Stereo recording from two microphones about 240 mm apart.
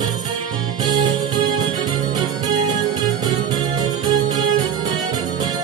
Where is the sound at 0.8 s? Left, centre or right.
Centre.